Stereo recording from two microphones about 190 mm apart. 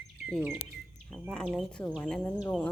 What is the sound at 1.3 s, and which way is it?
A woman's voice, centre (ahead or behind).